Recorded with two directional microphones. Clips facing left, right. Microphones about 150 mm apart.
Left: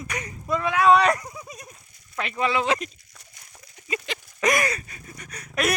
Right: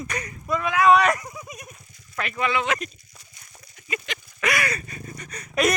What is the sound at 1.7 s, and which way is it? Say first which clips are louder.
Speech: right 1 dB; 25° left (ahead or behind).